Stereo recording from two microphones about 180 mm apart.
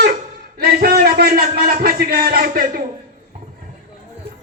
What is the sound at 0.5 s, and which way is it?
Music, 60° right (ahead or behind).